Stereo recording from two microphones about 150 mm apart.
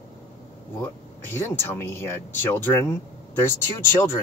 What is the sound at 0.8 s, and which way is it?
Speech, 15° left (ahead or behind).